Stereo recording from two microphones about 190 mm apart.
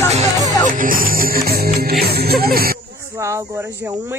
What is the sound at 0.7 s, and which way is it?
Music, 45° right (ahead or behind).